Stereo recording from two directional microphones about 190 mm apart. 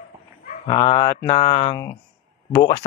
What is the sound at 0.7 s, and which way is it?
A man's voice, 25° left (ahead or behind).